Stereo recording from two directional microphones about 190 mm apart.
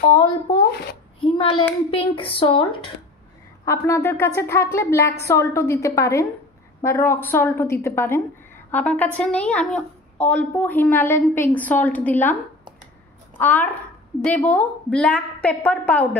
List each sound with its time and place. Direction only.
1.2 s a child's voice: 30° left (ahead or behind)
3.6 s a woman's voice: 15° left (ahead or behind)
13.4 s a woman's voice: 10° left (ahead or behind)